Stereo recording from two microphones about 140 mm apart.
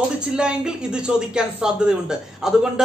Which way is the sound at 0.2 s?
5° right (ahead or behind).